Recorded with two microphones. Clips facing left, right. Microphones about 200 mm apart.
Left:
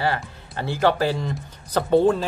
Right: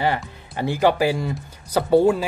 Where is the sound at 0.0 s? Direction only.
15° right (ahead or behind).